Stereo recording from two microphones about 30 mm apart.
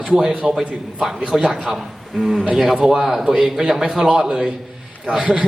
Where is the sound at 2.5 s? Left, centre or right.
Centre.